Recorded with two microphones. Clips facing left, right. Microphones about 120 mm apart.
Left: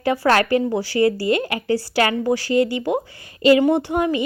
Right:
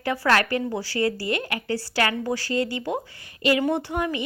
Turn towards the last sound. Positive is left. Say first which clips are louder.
# left 6 dB
turn(degrees=20)  # may be behind; listen again after turning